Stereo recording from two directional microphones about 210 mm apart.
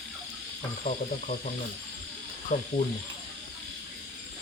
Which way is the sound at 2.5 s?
35° left (ahead or behind).